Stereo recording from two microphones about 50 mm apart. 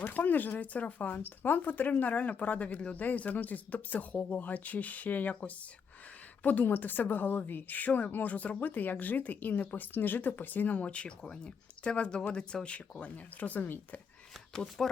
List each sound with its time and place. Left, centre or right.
0.0 s a woman's voice: left
14.5 s speech: centre